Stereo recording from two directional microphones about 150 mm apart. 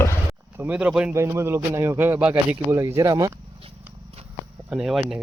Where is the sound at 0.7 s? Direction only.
5° right (ahead or behind).